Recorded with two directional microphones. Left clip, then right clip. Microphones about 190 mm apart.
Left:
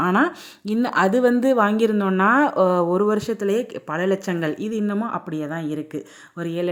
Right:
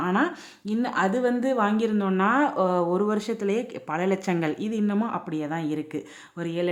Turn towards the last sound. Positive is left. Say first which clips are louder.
# left 3 dB
turn(degrees=10)  # may be behind; listen again after turning